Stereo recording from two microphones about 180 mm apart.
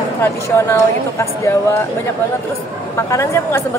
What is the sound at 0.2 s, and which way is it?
Speech, 15° left (ahead or behind).